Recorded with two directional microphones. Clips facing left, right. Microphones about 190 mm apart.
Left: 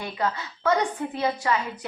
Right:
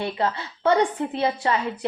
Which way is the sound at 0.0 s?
30° right (ahead or behind).